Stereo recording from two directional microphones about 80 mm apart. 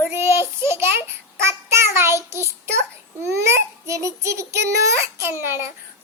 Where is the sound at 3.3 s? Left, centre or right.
Right.